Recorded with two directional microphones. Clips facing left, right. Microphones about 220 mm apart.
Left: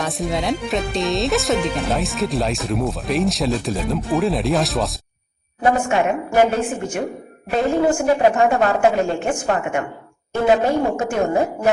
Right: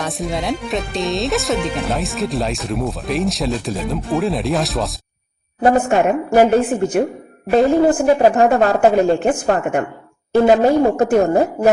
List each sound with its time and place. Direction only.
0.0 s speech: centre (ahead or behind)
5.6 s a woman's voice: 35° right (ahead or behind)